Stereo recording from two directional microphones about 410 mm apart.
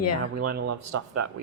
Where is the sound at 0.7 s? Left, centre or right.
Right.